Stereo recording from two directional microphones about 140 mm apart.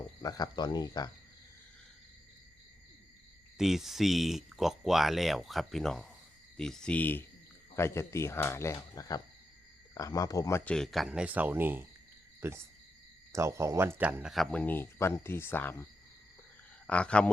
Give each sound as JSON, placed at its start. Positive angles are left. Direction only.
{"t": 0.2, "sound": "speech", "side_deg": 30}
{"t": 3.6, "sound": "speech", "side_deg": 0}
{"t": 10.6, "sound": "speech", "side_deg": 5}